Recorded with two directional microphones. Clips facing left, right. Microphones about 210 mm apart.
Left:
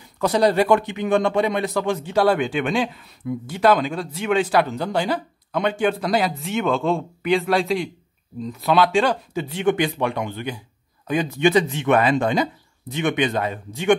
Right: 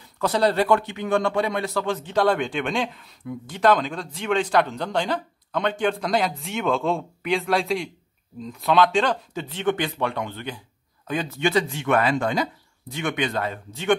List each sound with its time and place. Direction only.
0.2 s speech: 15° left (ahead or behind)